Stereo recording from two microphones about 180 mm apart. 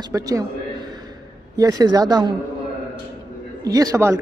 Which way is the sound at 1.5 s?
20° right (ahead or behind).